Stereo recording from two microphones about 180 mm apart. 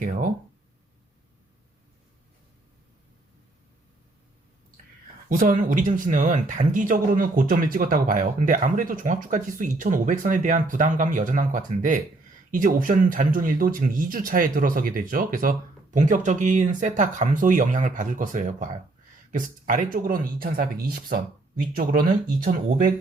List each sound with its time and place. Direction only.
0.0 s speech: 50° right (ahead or behind)
5.3 s speech: 50° right (ahead or behind)